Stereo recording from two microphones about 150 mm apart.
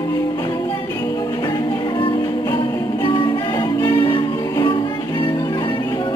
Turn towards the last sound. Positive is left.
turn(degrees=25)  # may be behind; listen again after turning